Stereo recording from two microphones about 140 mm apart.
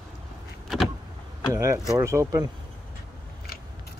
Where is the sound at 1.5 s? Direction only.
25° right (ahead or behind).